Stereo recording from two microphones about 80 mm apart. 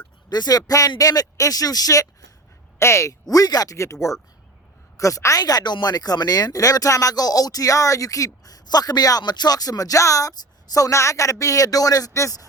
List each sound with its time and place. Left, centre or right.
0.3 s speech: left
2.7 s speech: left
4.9 s speech: left